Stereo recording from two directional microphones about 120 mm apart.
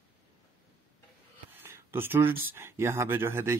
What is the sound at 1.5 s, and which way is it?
Speech, 20° right (ahead or behind).